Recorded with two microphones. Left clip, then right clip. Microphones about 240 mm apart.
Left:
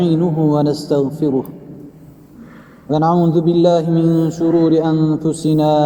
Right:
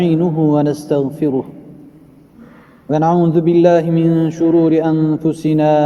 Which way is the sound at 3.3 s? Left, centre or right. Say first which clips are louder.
Right 2 dB; right.